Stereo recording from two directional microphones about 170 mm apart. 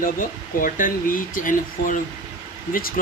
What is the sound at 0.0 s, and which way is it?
Speech, 50° left (ahead or behind).